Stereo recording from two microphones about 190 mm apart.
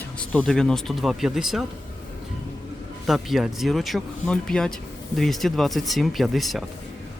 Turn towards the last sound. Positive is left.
turn(degrees=0)  # may be behind; listen again after turning